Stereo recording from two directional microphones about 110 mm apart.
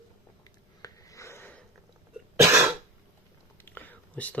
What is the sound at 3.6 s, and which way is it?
Whispering, 15° left (ahead or behind).